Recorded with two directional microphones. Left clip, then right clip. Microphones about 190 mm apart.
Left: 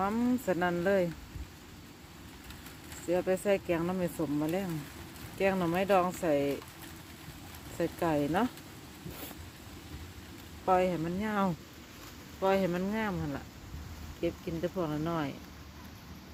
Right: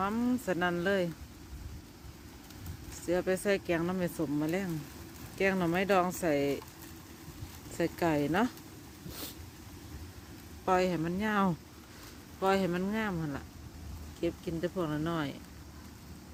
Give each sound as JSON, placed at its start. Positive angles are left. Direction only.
{"t": 0.0, "sound": "speech", "side_deg": 0}
{"t": 3.1, "sound": "speech", "side_deg": -10}
{"t": 7.8, "sound": "speech", "side_deg": -20}
{"t": 10.7, "sound": "speech", "side_deg": -15}